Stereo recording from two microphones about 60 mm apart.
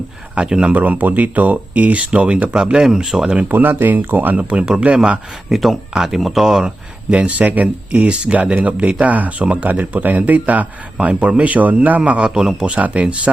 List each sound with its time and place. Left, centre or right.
0.3 s speech: centre
0.7 s speech: right
2.8 s speech: centre
3.5 s speech: right; by 5.2 s centre
5.5 s speech: centre
6.7 s speech: centre